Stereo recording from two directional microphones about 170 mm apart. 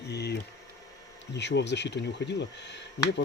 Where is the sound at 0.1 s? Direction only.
80° left.